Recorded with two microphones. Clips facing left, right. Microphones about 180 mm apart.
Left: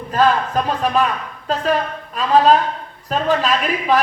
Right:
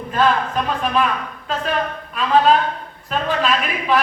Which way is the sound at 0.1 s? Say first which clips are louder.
Left 2 dB; 40° left (ahead or behind).